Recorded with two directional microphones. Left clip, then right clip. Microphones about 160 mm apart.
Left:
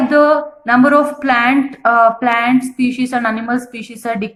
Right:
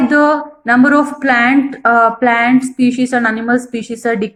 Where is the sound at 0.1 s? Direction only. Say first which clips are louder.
Left 1 dB; 20° right (ahead or behind).